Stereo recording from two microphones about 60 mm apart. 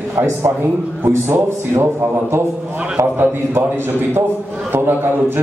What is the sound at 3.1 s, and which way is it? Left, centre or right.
A man's voice, right.